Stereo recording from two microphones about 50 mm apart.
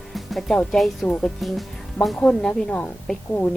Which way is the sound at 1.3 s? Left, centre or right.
Centre.